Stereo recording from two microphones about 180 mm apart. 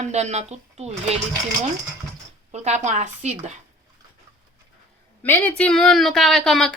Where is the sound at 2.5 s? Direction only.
40° right (ahead or behind).